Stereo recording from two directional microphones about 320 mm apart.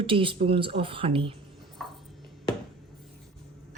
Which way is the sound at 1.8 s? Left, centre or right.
Centre.